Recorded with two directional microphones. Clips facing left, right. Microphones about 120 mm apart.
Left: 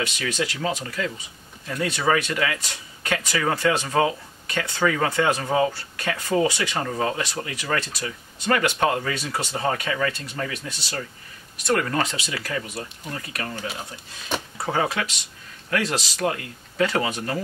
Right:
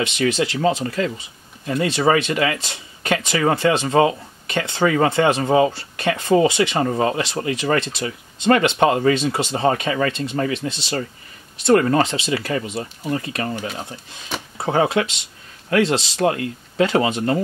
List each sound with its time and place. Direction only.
0.0 s speech: 25° right (ahead or behind)